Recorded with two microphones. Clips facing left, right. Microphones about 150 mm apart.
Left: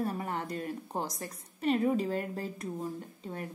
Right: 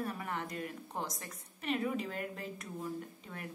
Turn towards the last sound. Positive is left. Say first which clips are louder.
# left 4 dB
turn(degrees=35)  # may be behind; listen again after turning